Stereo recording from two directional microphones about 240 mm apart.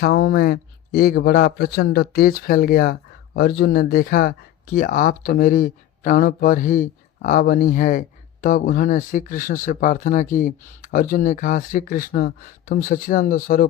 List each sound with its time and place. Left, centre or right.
0.0 s a man's voice: left